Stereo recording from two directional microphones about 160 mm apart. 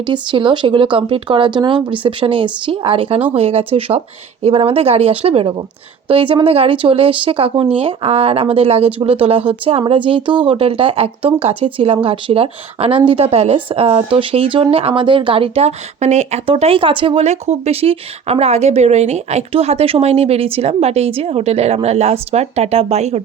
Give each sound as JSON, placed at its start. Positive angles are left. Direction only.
{"t": 0.0, "sound": "speech", "side_deg": -30}